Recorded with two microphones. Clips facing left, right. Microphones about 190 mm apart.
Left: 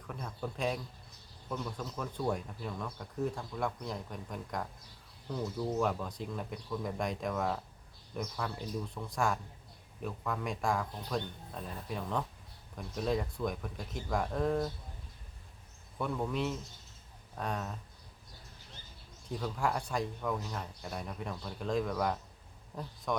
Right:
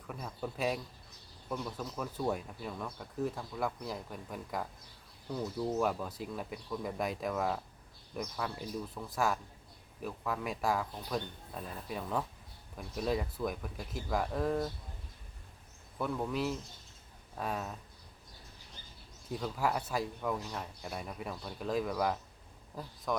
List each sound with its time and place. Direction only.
0.1 s speech: 5° right (ahead or behind)
16.0 s speech: centre (ahead or behind)
19.3 s speech: 5° right (ahead or behind)